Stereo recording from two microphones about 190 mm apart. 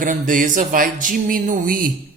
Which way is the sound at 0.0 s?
45° right (ahead or behind).